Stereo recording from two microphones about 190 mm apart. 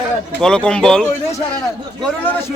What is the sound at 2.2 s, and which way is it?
Speech, 10° left (ahead or behind).